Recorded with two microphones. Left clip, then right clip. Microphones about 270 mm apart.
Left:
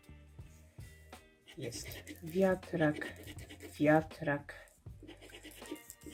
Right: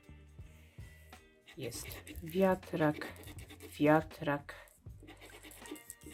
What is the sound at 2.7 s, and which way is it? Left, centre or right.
Speech, centre.